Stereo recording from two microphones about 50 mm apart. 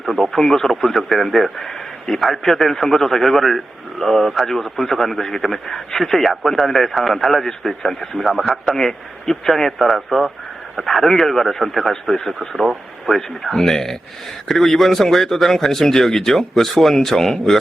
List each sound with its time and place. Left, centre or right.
0.0 s a man's voice: centre